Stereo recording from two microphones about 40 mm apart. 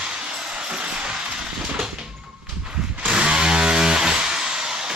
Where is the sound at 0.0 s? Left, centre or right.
Right.